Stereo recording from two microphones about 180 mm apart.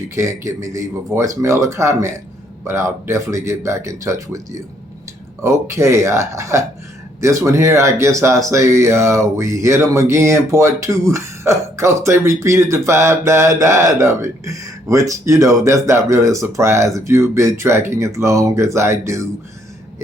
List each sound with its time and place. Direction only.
0.2 s speech: 15° right (ahead or behind)